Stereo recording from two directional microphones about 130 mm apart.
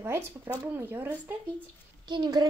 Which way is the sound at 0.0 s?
20° right (ahead or behind).